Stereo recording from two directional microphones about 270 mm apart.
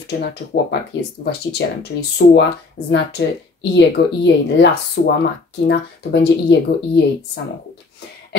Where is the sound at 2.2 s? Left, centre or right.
Left.